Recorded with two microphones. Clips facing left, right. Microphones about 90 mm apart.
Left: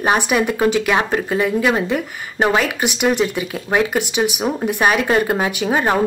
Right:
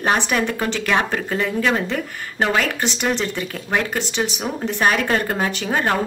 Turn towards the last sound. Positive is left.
turn(degrees=15)  # may be behind; listen again after turning